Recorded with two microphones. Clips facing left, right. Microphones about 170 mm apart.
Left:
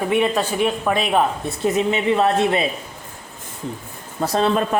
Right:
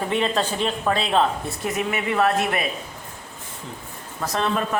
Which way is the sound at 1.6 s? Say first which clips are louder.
Left 7 dB; 25° left (ahead or behind).